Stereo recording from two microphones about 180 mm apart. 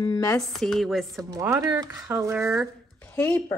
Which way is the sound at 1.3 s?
15° right (ahead or behind).